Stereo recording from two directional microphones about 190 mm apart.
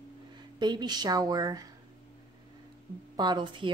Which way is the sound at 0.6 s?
20° right (ahead or behind).